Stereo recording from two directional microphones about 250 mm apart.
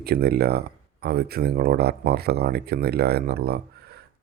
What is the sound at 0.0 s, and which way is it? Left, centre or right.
Speech, right.